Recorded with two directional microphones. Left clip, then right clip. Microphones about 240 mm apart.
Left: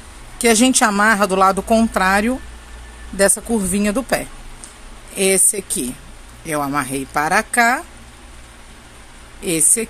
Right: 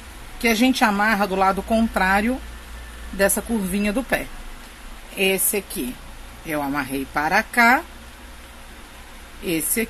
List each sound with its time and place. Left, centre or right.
0.4 s speech: left